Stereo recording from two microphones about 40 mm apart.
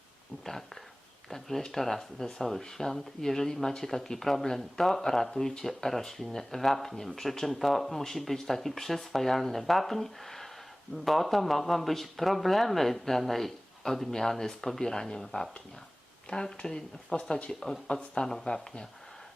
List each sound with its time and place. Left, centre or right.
1.3 s speech: centre
16.6 s speech: left
17.5 s speech: centre